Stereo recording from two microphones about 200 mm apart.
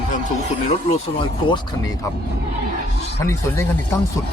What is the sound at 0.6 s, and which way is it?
Speech, 30° left (ahead or behind).